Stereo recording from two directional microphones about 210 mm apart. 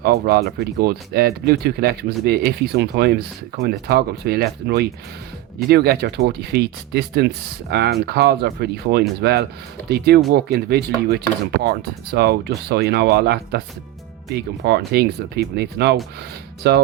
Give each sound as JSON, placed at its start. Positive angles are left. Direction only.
{"t": 0.0, "sound": "speech", "side_deg": -50}